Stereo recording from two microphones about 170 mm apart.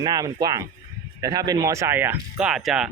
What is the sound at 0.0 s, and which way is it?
Speech, 25° right (ahead or behind).